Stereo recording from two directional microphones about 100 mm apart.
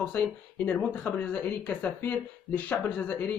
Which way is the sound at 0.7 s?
15° left (ahead or behind).